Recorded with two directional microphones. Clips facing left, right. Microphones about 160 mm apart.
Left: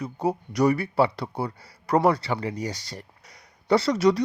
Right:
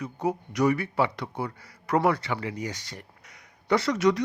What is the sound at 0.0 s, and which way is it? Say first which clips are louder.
Speech: left 2 dB; 35° left (ahead or behind).